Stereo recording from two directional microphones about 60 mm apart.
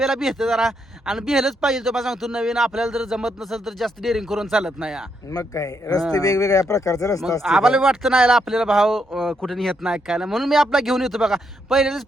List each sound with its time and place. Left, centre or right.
0.0 s a man's voice: centre
5.3 s speech: left
7.4 s a man's voice: centre
9.8 s a man's voice: centre